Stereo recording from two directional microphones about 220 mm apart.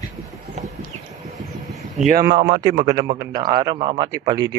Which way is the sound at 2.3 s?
25° right (ahead or behind).